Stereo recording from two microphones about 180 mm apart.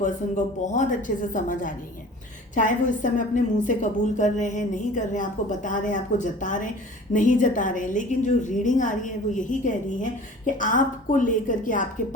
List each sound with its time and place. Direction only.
0.0 s a woman's voice: 45° left (ahead or behind)